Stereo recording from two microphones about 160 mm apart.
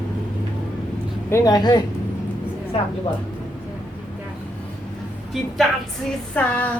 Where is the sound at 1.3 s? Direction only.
20° left (ahead or behind).